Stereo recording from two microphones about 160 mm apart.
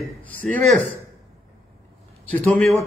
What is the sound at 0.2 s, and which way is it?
Speech, 10° left (ahead or behind).